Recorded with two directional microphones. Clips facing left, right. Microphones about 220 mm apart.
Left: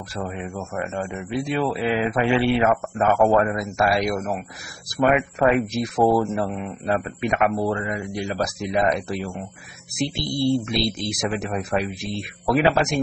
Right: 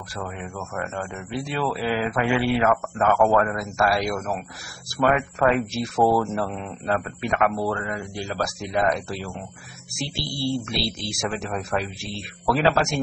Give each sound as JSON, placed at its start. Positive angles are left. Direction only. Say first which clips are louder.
{"t": 0.1, "sound": "speech", "louder": "left 3 dB", "side_deg": 20}